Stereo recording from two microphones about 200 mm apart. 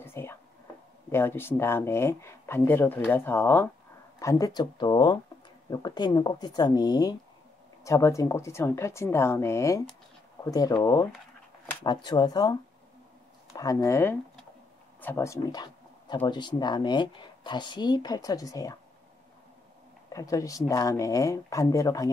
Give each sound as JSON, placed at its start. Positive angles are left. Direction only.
{"t": 0.0, "sound": "a sound", "side_deg": 10}
{"t": 1.1, "sound": "a woman's voice", "side_deg": 10}
{"t": 20.1, "sound": "speech", "side_deg": 15}